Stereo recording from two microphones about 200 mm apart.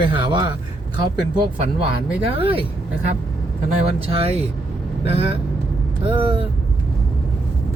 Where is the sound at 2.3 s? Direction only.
25° right (ahead or behind).